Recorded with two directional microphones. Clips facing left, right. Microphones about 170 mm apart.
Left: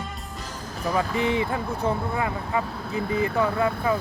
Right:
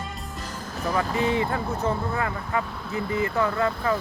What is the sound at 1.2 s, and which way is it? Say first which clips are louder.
Speech: even; 20° left (ahead or behind).